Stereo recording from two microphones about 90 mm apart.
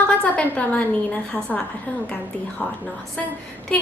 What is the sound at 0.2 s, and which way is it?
A woman's voice, 15° left (ahead or behind).